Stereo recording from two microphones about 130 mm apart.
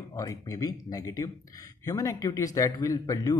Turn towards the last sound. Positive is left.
turn(degrees=30)  # may be behind; listen again after turning